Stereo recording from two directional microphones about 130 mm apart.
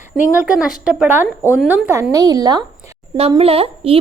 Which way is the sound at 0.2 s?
10° right (ahead or behind).